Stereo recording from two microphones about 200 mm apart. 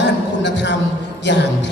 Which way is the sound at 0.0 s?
60° left (ahead or behind).